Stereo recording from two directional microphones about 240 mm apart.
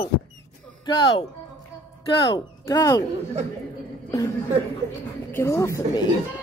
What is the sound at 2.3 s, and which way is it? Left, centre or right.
Speech, centre.